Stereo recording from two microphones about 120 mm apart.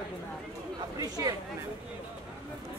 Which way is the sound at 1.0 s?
30° right (ahead or behind).